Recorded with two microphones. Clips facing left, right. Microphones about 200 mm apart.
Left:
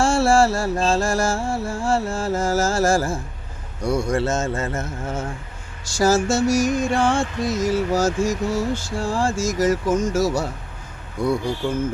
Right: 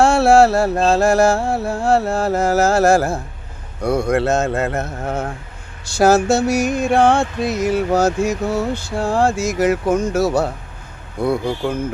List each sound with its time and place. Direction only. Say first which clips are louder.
0.0 s music: right 5 dB; 60° right (ahead or behind)